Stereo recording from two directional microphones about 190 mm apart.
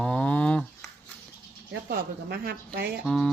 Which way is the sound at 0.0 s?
5° left (ahead or behind).